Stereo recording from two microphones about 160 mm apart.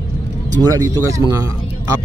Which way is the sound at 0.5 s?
25° right (ahead or behind).